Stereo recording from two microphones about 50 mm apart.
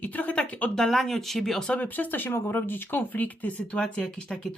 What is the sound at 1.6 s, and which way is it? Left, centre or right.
Speech, left.